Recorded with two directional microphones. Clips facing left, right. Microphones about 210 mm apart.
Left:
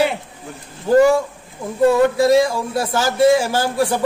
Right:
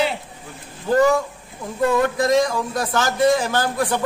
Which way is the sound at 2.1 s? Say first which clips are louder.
Left 4 dB; 10° left (ahead or behind).